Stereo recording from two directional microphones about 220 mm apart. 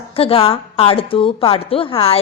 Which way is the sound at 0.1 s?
25° left (ahead or behind).